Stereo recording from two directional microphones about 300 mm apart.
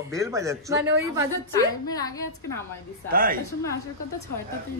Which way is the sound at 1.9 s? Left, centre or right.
Centre.